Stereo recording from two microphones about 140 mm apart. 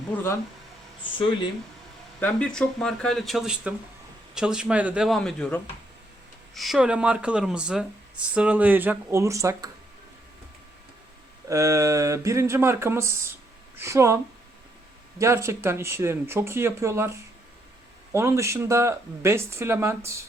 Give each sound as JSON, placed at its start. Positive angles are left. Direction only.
{"t": 0.1, "sound": "speech", "side_deg": 15}
{"t": 2.2, "sound": "speech", "side_deg": 5}
{"t": 5.0, "sound": "speech", "side_deg": 5}
{"t": 11.4, "sound": "speech", "side_deg": -25}
{"t": 15.2, "sound": "speech", "side_deg": -20}